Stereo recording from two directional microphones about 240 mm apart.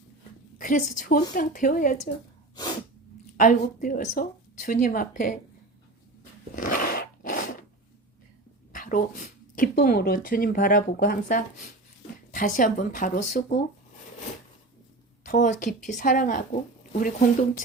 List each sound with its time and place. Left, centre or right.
0.6 s speech: left
3.3 s speech: left
6.6 s a sound: left
8.7 s speech: left
15.2 s a woman's voice: left